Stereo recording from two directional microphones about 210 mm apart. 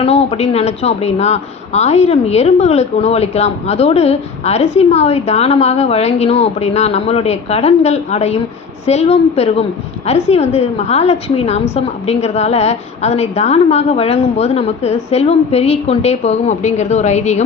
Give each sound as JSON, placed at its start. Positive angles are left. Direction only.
{"t": 0.0, "sound": "a woman's voice", "side_deg": 30}